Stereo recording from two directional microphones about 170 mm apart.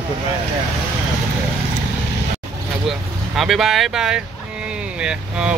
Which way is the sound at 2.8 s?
Centre (ahead or behind).